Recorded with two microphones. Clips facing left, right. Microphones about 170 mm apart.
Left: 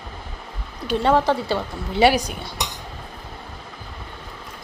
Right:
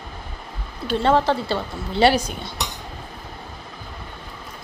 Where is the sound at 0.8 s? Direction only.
15° left (ahead or behind).